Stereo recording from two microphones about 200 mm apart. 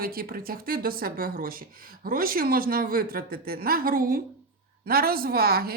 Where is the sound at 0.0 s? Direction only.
45° right (ahead or behind).